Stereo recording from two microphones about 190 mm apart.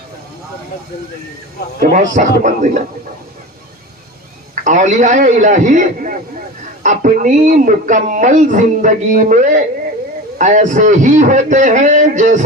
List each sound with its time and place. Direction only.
1.8 s speech: 45° right (ahead or behind)
4.6 s speech: 40° right (ahead or behind)